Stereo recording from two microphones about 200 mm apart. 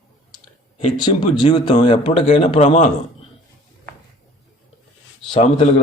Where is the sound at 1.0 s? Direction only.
20° left (ahead or behind).